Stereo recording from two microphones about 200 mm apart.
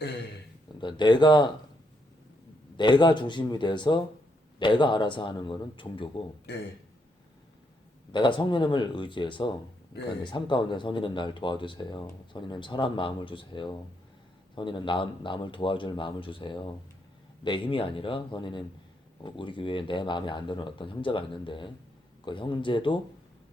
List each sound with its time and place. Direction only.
0.8 s speech: 20° left (ahead or behind)
2.7 s speech: 25° left (ahead or behind)
6.5 s a man's voice: 55° left (ahead or behind)
8.1 s speech: 25° left (ahead or behind)